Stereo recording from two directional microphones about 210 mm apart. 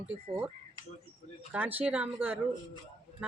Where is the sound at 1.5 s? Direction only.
5° right (ahead or behind).